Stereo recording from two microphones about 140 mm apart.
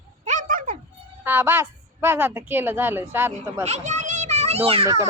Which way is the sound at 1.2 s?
15° right (ahead or behind).